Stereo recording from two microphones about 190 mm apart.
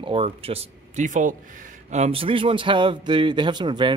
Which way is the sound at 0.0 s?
30° right (ahead or behind).